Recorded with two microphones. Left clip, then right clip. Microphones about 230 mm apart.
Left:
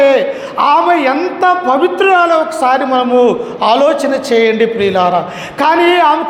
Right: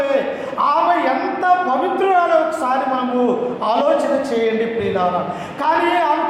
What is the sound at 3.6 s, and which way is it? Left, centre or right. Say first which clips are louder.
A man's voice: left 7 dB; left.